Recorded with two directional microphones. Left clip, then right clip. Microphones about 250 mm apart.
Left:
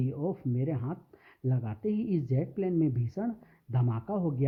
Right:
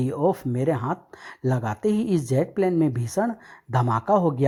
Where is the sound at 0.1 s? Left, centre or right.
Centre.